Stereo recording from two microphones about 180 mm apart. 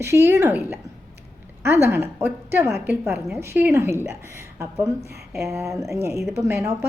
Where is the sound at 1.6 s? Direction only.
15° right (ahead or behind).